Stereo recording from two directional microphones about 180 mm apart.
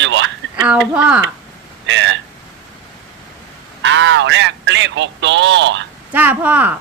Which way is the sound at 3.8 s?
90° right.